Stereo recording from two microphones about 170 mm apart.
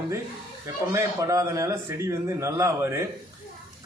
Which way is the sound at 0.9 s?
20° right (ahead or behind).